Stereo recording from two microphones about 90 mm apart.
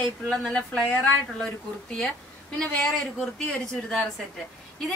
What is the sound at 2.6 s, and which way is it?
A woman's voice, 5° left (ahead or behind).